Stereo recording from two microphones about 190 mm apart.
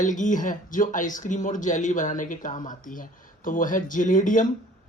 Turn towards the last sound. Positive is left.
turn(degrees=45)  # may be behind; listen again after turning